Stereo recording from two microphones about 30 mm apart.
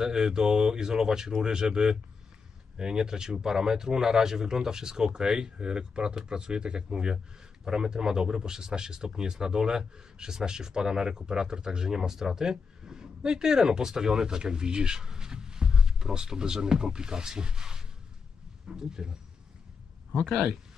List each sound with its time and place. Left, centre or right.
0.0 s speech: right